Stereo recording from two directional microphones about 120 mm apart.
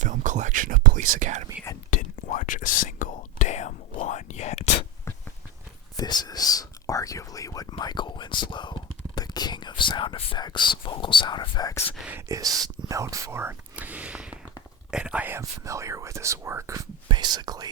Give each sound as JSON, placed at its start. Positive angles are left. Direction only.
{"t": 0.0, "sound": "whispering", "side_deg": -90}
{"t": 2.0, "sound": "whispering", "side_deg": 90}
{"t": 6.0, "sound": "whispering", "side_deg": 35}
{"t": 12.1, "sound": "whispering", "side_deg": -30}
{"t": 17.1, "sound": "whispering", "side_deg": -35}